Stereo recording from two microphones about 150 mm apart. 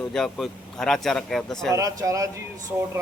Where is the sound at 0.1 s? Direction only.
5° left (ahead or behind).